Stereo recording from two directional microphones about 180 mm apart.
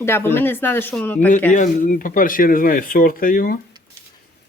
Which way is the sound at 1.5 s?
45° left (ahead or behind).